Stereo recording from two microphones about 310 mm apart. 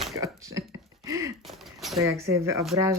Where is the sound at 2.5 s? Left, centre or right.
Centre.